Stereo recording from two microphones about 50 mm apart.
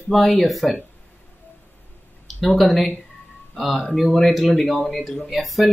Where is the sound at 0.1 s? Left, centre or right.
Centre.